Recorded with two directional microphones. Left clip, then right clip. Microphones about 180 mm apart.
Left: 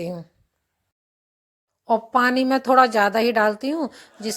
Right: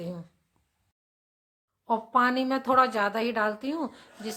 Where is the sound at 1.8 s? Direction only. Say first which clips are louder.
Left 5 dB; 30° left (ahead or behind).